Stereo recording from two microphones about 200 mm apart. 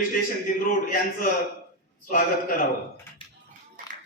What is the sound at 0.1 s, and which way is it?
A man's voice, 45° left (ahead or behind).